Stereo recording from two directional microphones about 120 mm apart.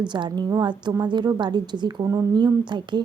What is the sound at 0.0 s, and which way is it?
A woman's voice, 40° right (ahead or behind).